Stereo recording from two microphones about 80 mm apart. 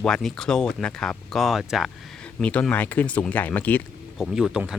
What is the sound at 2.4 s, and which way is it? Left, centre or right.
Speech, centre.